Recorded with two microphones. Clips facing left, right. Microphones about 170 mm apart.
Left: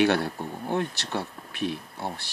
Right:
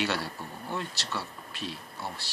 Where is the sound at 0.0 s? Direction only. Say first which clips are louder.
Left 9 dB; 55° left (ahead or behind).